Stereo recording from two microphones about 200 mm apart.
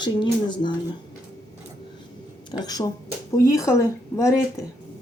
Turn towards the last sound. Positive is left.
turn(degrees=15)  # may be behind; listen again after turning